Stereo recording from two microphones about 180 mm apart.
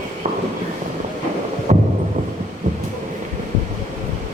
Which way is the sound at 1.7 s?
40° right (ahead or behind).